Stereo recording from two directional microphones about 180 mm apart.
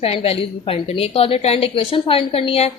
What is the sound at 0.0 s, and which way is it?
A woman's voice, 35° left (ahead or behind).